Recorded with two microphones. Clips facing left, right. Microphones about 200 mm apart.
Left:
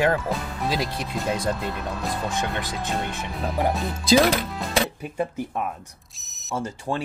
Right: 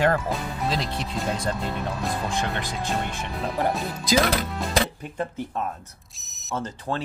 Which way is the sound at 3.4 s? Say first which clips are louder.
Left 1 dB; centre (ahead or behind).